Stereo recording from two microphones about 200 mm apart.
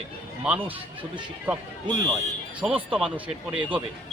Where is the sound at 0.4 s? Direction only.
5° right (ahead or behind).